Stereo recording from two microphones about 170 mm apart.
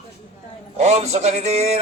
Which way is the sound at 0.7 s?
40° right (ahead or behind).